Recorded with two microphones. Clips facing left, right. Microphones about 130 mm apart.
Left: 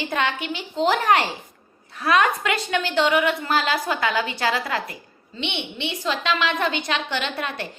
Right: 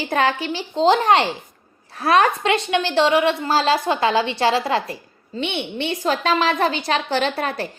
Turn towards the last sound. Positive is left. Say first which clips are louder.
# right 6 dB
turn(degrees=-35)  # may be behind; listen again after turning